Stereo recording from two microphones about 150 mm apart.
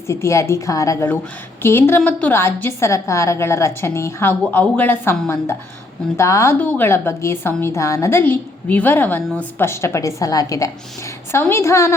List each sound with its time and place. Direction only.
0.1 s a woman's voice: 20° left (ahead or behind)
6.1 s a woman's voice: 20° left (ahead or behind)